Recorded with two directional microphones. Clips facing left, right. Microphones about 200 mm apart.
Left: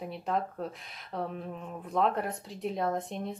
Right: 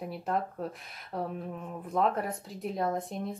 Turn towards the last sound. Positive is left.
turn(degrees=0)  # may be behind; listen again after turning